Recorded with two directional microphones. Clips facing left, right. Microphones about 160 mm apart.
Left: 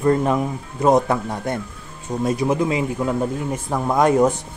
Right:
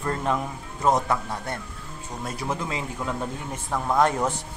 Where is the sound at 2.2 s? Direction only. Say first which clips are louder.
Left 11 dB; 15° left (ahead or behind).